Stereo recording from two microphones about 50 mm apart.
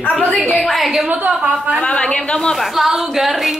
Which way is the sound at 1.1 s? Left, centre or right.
Right.